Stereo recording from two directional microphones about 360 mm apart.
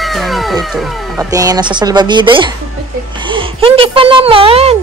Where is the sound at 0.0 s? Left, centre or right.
Centre.